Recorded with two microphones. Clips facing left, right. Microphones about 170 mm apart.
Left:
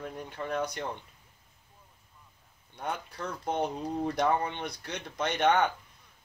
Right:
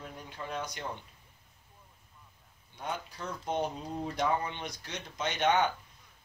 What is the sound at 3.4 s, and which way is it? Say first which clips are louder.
Speech: left 2 dB; 55° left (ahead or behind).